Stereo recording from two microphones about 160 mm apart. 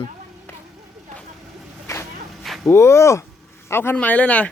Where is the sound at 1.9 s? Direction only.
20° left (ahead or behind).